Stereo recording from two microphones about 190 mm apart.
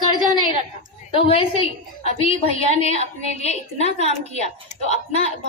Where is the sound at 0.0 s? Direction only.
25° left (ahead or behind).